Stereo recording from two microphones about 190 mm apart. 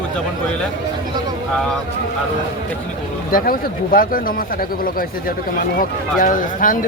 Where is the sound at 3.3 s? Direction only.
50° left (ahead or behind).